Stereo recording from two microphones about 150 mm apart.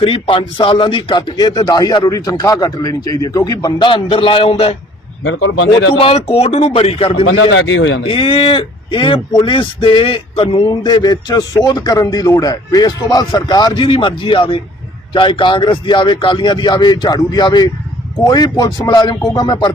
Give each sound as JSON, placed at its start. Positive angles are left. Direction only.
{"t": 0.0, "sound": "a man's voice", "side_deg": 35}
{"t": 6.0, "sound": "a man's voice", "side_deg": 40}
{"t": 10.7, "sound": "a man's voice", "side_deg": 25}